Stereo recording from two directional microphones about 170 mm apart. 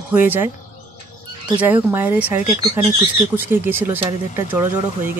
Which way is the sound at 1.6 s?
10° right (ahead or behind).